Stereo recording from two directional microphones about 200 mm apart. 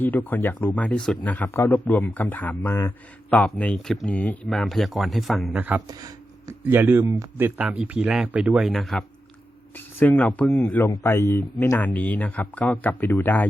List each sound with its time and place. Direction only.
0.0 s speech: 10° left (ahead or behind); by 5.8 s 5° right (ahead or behind)
5.9 s speech: 20° right (ahead or behind); by 13.5 s 10° left (ahead or behind)